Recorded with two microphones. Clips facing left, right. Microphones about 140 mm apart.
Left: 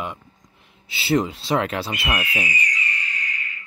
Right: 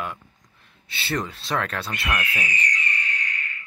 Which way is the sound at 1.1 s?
25° left (ahead or behind).